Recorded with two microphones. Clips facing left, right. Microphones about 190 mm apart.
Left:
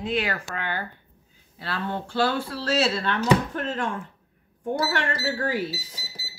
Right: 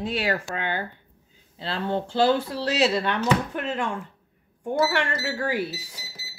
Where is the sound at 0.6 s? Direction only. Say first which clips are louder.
Right 2 dB; 20° right (ahead or behind).